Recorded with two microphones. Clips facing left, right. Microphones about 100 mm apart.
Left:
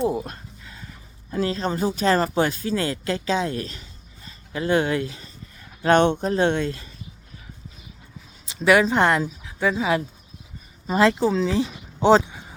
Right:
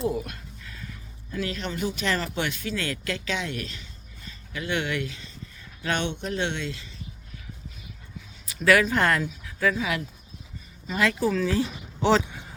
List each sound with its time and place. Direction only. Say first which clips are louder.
0.0 s a sound: left 4 dB; 25° left (ahead or behind)
1.3 s speech: left 7 dB; 35° left (ahead or behind)
5.8 s speech: left 11 dB; 45° left (ahead or behind)
8.4 s speech: left 3 dB; 25° left (ahead or behind)